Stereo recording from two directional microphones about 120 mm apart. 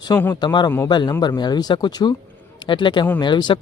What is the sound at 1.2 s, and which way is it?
Speech, 35° left (ahead or behind).